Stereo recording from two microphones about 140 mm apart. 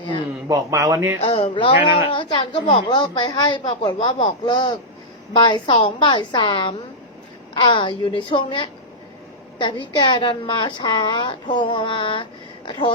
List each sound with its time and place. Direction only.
0.0 s a sound: 35° left (ahead or behind)
0.4 s speech: 25° right (ahead or behind)
1.2 s a woman's voice: 40° left (ahead or behind)